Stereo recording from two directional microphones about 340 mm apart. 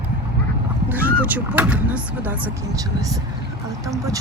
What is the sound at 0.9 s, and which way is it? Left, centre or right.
Speech, centre.